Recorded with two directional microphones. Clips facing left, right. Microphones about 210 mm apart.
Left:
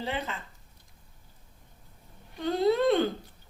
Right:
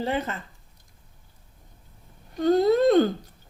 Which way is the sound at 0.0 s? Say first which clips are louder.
Right 6 dB; 45° right (ahead or behind).